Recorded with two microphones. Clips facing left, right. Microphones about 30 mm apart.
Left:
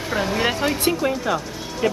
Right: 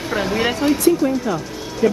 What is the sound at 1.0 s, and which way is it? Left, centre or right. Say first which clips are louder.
Speech: right 2 dB; left.